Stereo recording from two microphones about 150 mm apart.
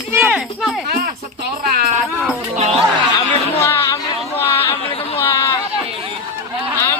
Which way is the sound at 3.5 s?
20° left (ahead or behind).